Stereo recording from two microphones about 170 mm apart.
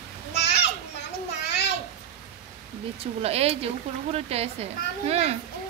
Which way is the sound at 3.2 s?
35° right (ahead or behind).